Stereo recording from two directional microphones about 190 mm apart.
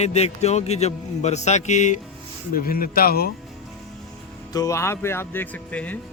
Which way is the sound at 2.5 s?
50° left (ahead or behind).